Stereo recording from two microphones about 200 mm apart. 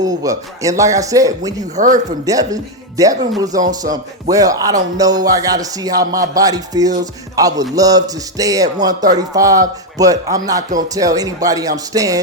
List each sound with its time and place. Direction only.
0.0 s a man's voice: 20° right (ahead or behind)
1.7 s speech: 40° right (ahead or behind)
2.2 s a man's voice: 15° right (ahead or behind)